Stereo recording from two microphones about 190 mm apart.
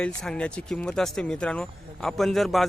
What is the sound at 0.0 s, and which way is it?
Speech, 5° left (ahead or behind).